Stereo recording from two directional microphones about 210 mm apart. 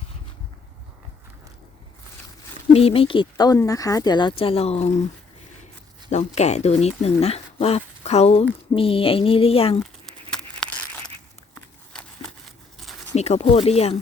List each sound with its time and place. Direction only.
2.7 s speech: 25° left (ahead or behind)
6.1 s speech: 35° left (ahead or behind)
9.8 s crumpling: 5° left (ahead or behind)
11.9 s a sound: 5° left (ahead or behind)
13.1 s speech: 30° left (ahead or behind)